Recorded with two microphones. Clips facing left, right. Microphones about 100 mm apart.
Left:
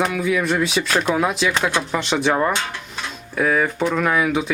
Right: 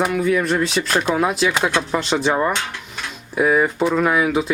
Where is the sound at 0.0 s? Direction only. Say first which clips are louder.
Right 2 dB; centre (ahead or behind).